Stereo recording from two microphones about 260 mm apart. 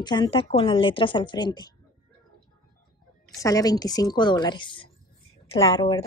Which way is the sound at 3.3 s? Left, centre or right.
Centre.